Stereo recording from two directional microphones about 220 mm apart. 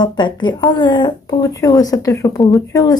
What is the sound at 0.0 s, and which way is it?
A woman's voice, 20° left (ahead or behind).